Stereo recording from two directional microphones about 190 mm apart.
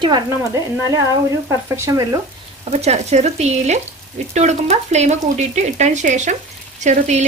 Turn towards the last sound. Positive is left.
turn(degrees=-40)  # may be behind; listen again after turning